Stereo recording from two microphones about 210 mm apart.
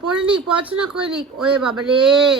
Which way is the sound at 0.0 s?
5° right (ahead or behind).